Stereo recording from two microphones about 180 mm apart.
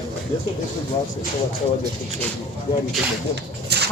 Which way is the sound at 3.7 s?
65° right (ahead or behind).